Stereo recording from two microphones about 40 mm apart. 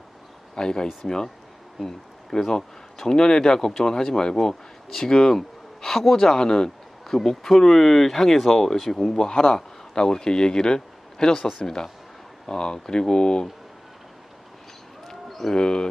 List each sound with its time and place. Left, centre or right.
0.5 s speech: centre
2.3 s speech: centre
10.8 s a sound: centre
11.4 s speech: centre
12.5 s speech: centre
15.0 s a sound: centre
15.5 s speech: centre